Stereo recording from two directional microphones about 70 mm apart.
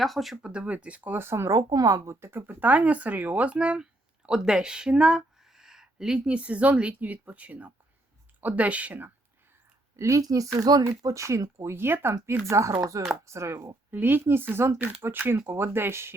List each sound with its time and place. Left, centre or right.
0.0 s speech: centre
0.4 s speech: centre; by 1.5 s right
1.5 s speech: right
2.2 s speech: right
10.0 s speech: right
10.7 s speech: right
11.1 s speech: right
13.9 s speech: right